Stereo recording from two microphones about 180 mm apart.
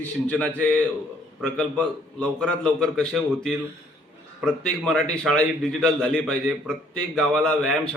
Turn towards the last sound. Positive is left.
turn(degrees=5)  # may be behind; listen again after turning